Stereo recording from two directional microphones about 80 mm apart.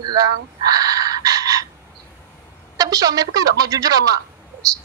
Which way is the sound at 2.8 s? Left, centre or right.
Right.